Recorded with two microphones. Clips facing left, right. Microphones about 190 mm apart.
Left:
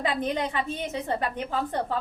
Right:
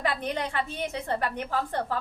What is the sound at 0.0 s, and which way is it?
A woman's voice, 20° left (ahead or behind).